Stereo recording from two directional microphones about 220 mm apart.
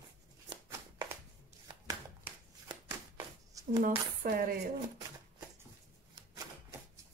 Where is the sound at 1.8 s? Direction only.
15° right (ahead or behind).